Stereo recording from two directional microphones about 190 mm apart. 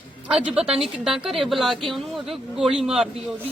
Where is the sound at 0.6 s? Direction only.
30° right (ahead or behind).